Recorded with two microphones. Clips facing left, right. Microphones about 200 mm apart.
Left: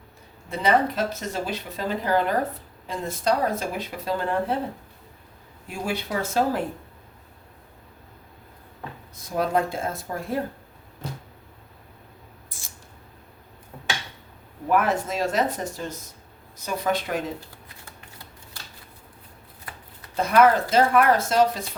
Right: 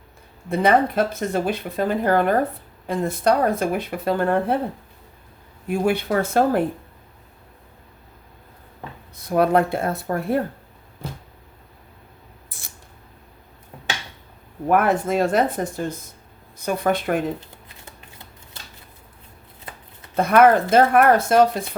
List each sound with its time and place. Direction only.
0.5 s speech: 55° right (ahead or behind)
5.6 s speech: 55° right (ahead or behind)
9.1 s speech: 60° right (ahead or behind)
12.5 s a sound: 60° right (ahead or behind)
14.7 s speech: 55° right (ahead or behind)
17.4 s shuffling cards: 20° right (ahead or behind)
19.7 s shuffling cards: 25° right (ahead or behind)
20.1 s speech: 55° right (ahead or behind)